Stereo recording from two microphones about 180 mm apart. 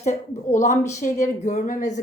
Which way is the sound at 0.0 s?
40° left (ahead or behind).